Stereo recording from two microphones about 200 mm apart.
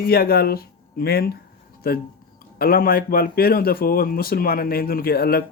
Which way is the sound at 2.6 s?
50° left (ahead or behind).